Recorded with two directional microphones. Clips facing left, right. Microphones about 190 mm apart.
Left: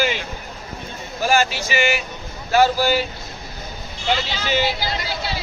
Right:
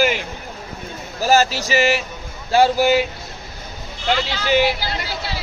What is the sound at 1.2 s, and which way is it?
Speech, 40° right (ahead or behind).